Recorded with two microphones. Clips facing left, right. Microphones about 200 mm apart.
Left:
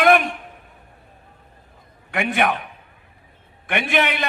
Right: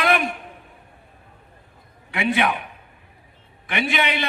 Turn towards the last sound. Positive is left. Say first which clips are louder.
# left 2 dB
turn(degrees=55)  # may be behind; listen again after turning